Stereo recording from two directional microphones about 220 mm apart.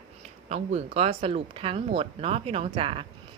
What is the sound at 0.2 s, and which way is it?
Speech, 30° right (ahead or behind).